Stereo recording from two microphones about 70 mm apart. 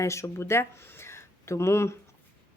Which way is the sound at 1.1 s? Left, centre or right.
Left.